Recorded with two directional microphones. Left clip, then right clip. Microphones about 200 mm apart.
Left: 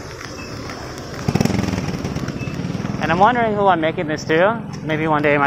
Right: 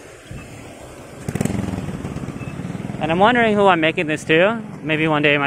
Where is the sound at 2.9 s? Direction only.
40° right (ahead or behind).